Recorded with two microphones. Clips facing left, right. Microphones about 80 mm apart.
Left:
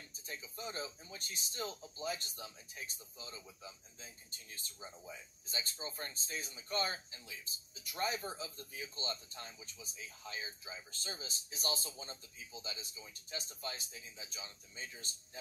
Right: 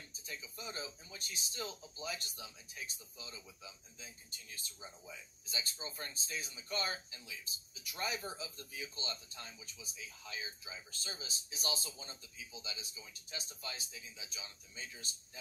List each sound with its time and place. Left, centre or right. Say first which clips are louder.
0.3 s speech: left 2 dB; left